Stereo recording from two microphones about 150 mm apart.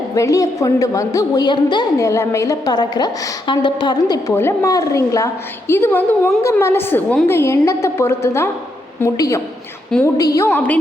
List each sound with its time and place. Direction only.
0.1 s a woman's voice: 20° left (ahead or behind)